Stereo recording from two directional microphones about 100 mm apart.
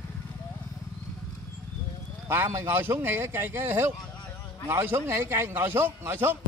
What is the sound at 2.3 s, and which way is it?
A man's voice, 25° right (ahead or behind).